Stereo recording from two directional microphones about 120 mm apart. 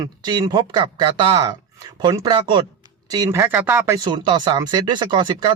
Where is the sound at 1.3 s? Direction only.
30° right (ahead or behind).